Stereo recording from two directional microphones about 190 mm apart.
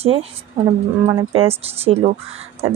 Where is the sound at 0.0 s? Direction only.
30° right (ahead or behind).